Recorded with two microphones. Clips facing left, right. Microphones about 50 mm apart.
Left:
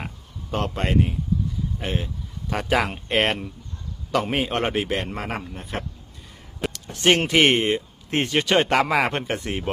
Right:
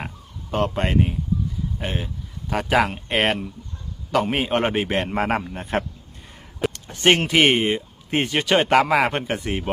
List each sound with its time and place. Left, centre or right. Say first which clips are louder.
0.5 s a man's voice: right 2 dB; centre; by 5.0 s right
5.1 s a man's voice: right 7 dB; right
6.7 s a sound: right 1 dB; right
7.2 s speech: right 1 dB; centre